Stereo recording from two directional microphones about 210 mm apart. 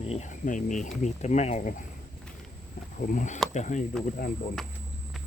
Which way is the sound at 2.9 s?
40° left (ahead or behind).